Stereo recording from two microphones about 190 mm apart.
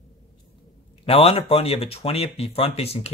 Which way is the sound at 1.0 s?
30° left (ahead or behind).